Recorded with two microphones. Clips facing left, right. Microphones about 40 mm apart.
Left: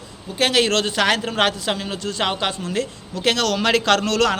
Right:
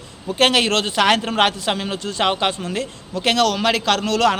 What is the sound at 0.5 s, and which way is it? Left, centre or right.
A man's voice, right.